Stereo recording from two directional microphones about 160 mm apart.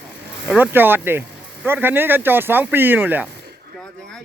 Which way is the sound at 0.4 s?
10° right (ahead or behind).